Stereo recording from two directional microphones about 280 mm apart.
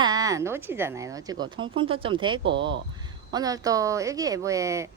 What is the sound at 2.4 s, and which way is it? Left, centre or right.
Speech, right.